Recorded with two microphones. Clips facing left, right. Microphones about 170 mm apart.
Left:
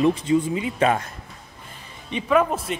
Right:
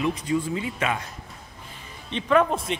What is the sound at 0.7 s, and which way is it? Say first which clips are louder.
Speech: left 7 dB; 40° left (ahead or behind).